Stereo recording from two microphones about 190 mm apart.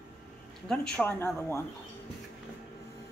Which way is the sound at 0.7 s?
10° left (ahead or behind).